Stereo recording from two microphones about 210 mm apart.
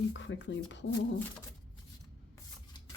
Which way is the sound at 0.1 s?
60° left (ahead or behind).